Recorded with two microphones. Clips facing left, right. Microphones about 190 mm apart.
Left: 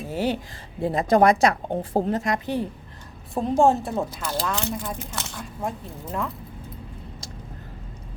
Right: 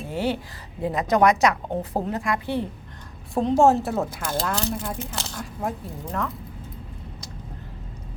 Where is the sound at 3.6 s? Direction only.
Centre (ahead or behind).